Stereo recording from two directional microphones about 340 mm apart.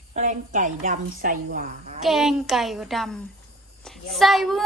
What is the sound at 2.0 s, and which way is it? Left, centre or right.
A woman's voice, centre.